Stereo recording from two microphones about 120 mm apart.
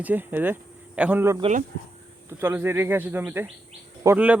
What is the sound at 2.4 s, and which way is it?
A man's voice, 20° right (ahead or behind).